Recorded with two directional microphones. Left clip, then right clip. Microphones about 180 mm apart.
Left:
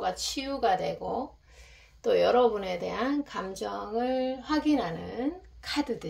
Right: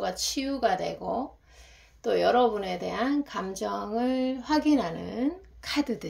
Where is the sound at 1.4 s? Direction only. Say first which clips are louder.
Even; 10° right (ahead or behind).